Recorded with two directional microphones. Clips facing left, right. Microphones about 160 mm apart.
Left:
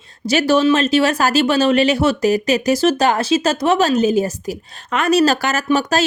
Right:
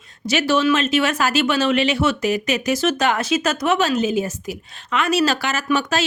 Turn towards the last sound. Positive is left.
turn(degrees=40)  # may be behind; listen again after turning